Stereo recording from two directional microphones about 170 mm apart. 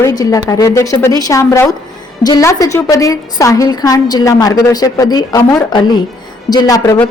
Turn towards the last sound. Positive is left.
turn(degrees=20)  # may be behind; listen again after turning